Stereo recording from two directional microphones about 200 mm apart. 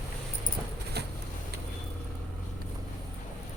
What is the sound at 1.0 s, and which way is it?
Vehicle, 55° right (ahead or behind).